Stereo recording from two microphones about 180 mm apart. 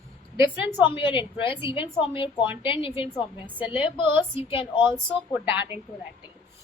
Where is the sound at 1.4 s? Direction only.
15° right (ahead or behind).